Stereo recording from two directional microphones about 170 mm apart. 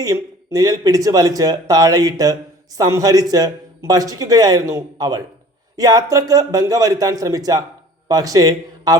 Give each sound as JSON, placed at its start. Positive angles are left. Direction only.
{"t": 0.0, "sound": "a man's voice", "side_deg": -20}